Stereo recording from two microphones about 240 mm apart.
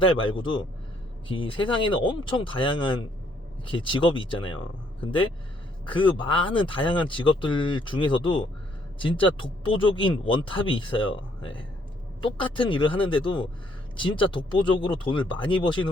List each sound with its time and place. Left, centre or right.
0.0 s speech: left